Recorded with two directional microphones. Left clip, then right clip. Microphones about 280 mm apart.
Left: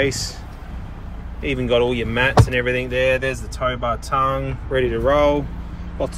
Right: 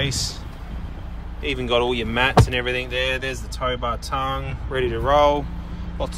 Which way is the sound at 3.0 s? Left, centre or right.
Centre.